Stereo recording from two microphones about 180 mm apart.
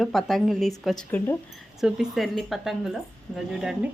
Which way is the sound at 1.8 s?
Centre (ahead or behind).